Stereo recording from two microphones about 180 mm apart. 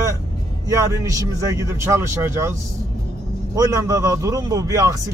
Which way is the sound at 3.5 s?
20° right (ahead or behind).